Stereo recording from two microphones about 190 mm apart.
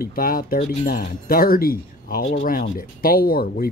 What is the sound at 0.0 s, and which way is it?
Speech, 50° left (ahead or behind).